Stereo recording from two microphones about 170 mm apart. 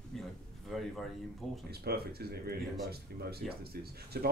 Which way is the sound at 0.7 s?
Centre (ahead or behind).